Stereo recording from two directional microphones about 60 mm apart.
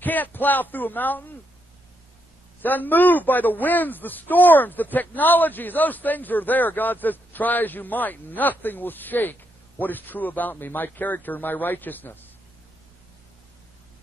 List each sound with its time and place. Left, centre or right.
0.0 s a man's voice: left
2.6 s a man's voice: left